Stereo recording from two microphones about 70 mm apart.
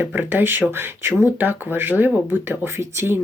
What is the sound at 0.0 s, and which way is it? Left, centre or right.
Speech, right.